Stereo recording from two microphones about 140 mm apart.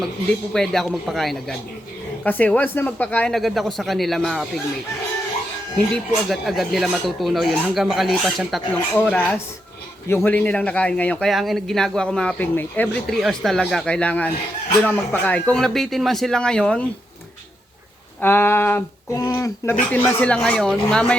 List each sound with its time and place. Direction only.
0.5 s speech: 5° left (ahead or behind)
2.2 s speech: 10° left (ahead or behind)
5.9 s speech: centre (ahead or behind)
8.7 s speech: 10° left (ahead or behind)
18.2 s speech: 15° left (ahead or behind)
19.9 s speech: 10° left (ahead or behind)